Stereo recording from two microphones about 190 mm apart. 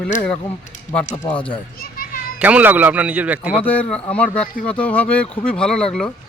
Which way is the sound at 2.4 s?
10° right (ahead or behind).